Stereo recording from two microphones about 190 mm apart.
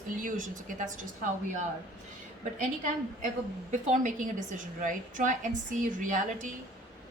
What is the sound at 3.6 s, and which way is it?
A woman's voice, 40° right (ahead or behind).